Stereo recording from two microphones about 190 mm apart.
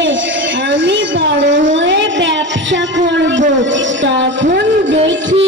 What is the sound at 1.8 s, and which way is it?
A woman's voice, 70° right (ahead or behind).